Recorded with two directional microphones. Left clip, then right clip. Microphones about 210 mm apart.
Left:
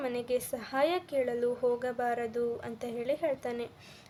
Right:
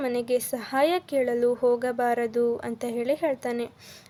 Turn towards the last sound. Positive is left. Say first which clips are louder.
# right 6 dB
turn(degrees=-30)  # may be behind; listen again after turning